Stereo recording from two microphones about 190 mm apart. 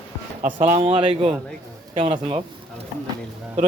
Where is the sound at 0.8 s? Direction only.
25° right (ahead or behind).